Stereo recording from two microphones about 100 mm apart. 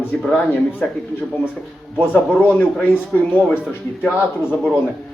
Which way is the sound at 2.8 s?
20° left (ahead or behind).